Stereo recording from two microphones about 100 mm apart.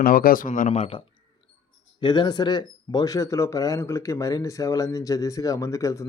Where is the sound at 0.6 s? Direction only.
90° left.